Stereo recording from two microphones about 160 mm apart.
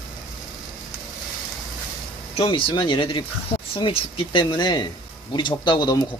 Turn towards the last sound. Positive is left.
turn(degrees=25)  # may be behind; listen again after turning